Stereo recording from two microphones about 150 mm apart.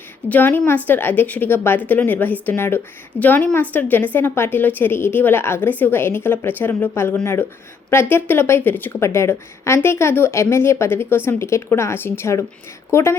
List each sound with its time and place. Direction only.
0.3 s a woman's voice: 10° left (ahead or behind)